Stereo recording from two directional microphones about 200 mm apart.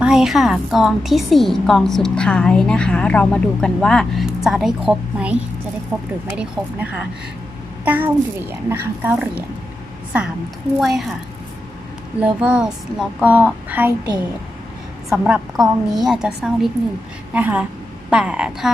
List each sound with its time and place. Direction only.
0.0 s a woman's voice: centre (ahead or behind)
10.8 s a woman's voice: centre (ahead or behind)
12.2 s a woman's voice: 5° right (ahead or behind)
15.1 s a woman's voice: centre (ahead or behind)